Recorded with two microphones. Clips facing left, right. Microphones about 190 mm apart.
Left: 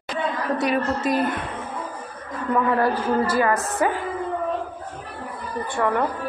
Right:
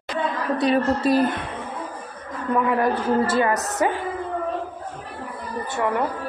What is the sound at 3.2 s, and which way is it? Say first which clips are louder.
Speech: even; 25° right (ahead or behind).